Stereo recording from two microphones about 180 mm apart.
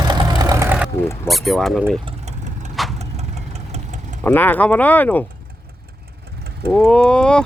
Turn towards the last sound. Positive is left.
turn(degrees=5)  # may be behind; listen again after turning